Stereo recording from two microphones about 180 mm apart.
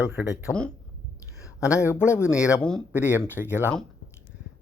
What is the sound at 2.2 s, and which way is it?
Speech, 5° right (ahead or behind).